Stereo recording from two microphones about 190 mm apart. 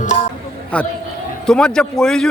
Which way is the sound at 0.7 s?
5° left (ahead or behind).